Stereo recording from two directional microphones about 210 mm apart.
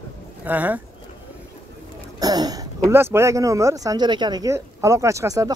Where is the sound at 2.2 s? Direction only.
20° right (ahead or behind).